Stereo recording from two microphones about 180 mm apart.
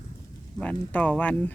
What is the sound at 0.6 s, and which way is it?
Speech, 10° left (ahead or behind).